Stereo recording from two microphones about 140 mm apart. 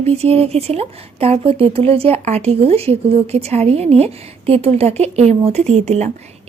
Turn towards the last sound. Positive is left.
turn(degrees=-50)  # may be behind; listen again after turning